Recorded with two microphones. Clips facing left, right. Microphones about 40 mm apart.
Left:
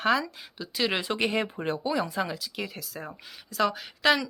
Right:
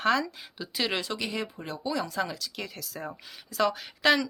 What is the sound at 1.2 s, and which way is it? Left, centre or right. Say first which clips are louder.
Speech: left 6 dB; left.